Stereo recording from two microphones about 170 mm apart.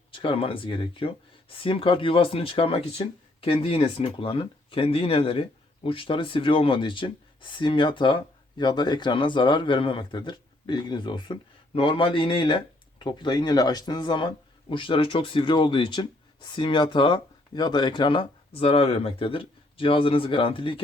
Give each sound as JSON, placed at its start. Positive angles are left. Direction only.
{"t": 0.1, "sound": "speech", "side_deg": 30}